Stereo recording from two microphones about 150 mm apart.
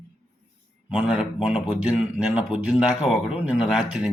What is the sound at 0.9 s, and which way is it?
A man's voice, 5° right (ahead or behind).